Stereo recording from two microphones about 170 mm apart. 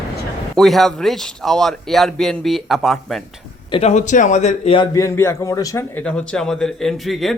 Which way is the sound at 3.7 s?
35° left (ahead or behind).